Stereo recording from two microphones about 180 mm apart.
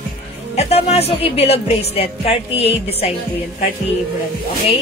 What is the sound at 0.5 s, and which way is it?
Speech, 35° left (ahead or behind).